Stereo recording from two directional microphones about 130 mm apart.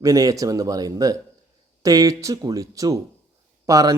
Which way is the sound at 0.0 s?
25° right (ahead or behind).